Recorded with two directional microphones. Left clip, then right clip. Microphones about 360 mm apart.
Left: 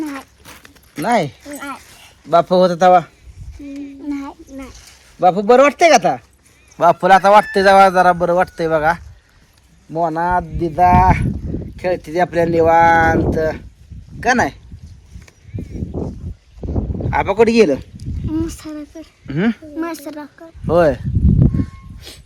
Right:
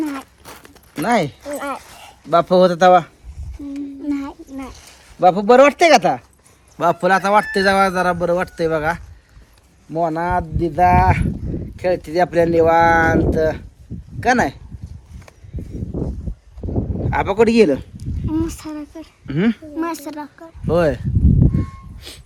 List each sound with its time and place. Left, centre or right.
0.4 s clip-clop: centre
1.0 s speech: centre
1.4 s dog: centre
2.3 s speech: centre
4.0 s a sound: centre
6.7 s speech: centre
16.6 s sheep: centre
17.1 s speech: centre
21.5 s a sound: centre